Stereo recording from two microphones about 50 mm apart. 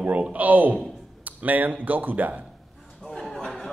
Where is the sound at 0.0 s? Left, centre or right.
Right.